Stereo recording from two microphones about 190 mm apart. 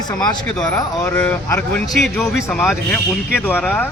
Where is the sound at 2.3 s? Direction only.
15° left (ahead or behind).